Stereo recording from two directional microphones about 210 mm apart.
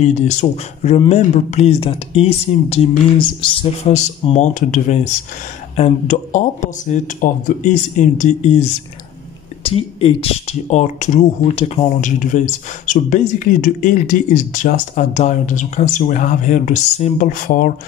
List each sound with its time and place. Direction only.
0.0 s speech: 30° left (ahead or behind)
9.6 s speech: 25° left (ahead or behind); by 17.7 s 45° left (ahead or behind)